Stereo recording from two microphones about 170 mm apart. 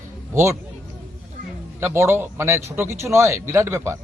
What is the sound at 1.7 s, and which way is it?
Speech, 15° right (ahead or behind).